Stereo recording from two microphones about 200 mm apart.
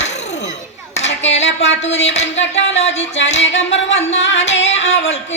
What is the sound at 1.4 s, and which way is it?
Speech, 65° left (ahead or behind).